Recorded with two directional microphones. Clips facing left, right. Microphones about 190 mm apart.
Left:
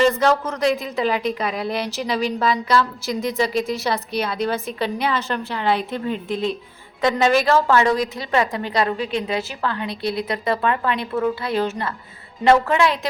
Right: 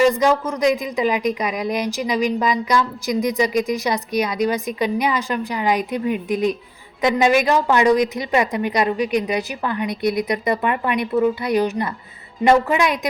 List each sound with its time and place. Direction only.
0.0 s a woman's voice: 10° right (ahead or behind)